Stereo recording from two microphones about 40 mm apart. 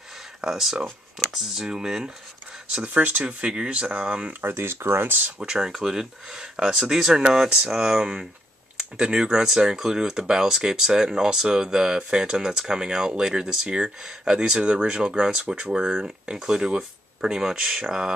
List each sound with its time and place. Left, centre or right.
0.4 s speech: centre
3.2 s speech: right
4.4 s speech: right
5.5 s speech: centre